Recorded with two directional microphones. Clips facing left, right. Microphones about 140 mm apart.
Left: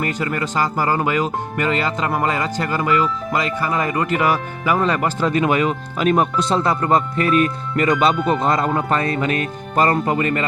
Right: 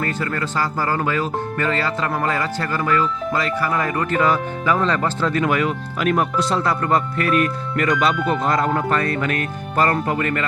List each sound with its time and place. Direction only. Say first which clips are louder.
0.0 s speech: left 1 dB; 15° left (ahead or behind)